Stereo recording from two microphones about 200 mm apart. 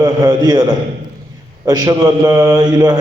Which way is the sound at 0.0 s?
20° right (ahead or behind).